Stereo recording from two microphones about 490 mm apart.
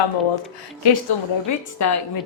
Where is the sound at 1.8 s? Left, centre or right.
Left.